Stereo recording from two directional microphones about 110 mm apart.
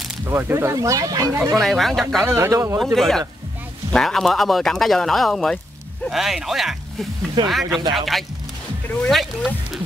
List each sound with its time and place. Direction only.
0.2 s speech: 20° right (ahead or behind)
1.5 s speech: centre (ahead or behind)
2.2 s speech: 25° right (ahead or behind)
2.8 s speech: centre (ahead or behind)